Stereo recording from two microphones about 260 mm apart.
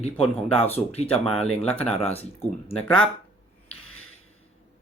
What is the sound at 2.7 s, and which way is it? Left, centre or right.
Speech, centre.